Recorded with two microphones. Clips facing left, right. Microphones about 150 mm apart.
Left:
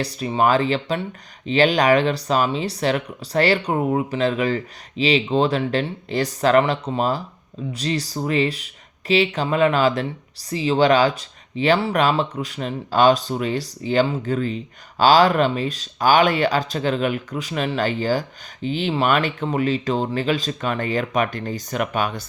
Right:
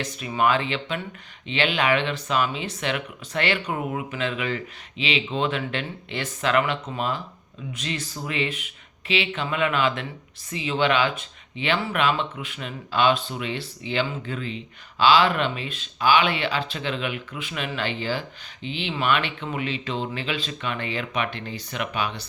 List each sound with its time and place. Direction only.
0.0 s speech: 35° left (ahead or behind)